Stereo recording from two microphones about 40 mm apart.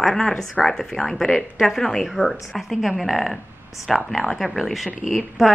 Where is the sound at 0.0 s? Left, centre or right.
Centre.